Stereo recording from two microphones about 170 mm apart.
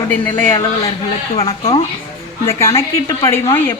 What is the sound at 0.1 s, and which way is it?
Speech, 10° left (ahead or behind).